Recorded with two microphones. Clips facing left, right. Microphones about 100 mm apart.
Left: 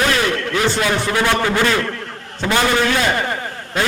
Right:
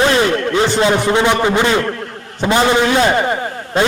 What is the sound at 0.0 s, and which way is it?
A man's voice, 25° right (ahead or behind).